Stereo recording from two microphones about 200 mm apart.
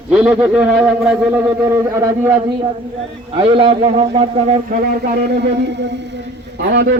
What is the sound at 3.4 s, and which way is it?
A man's voice, 25° right (ahead or behind).